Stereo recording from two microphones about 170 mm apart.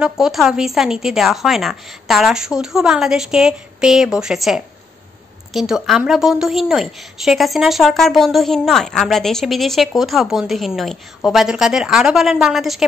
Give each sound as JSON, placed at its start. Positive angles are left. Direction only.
{"t": 0.0, "sound": "a woman's voice", "side_deg": 0}